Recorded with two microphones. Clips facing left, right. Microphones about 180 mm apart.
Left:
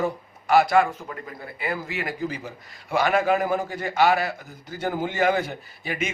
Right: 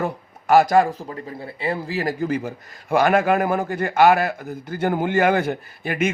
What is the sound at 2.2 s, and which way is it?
A man's voice, 50° right (ahead or behind).